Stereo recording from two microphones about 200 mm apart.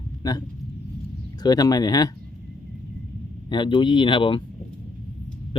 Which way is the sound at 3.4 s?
20° left (ahead or behind).